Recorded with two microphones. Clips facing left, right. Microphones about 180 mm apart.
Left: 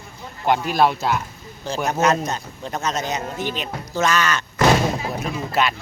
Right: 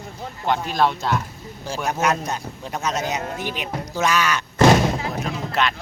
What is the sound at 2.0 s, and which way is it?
Speech, 10° right (ahead or behind).